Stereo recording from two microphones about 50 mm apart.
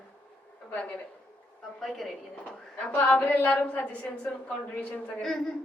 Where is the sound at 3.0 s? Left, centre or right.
Left.